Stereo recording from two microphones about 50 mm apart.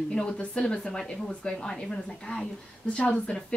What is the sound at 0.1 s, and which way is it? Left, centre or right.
Speech, centre.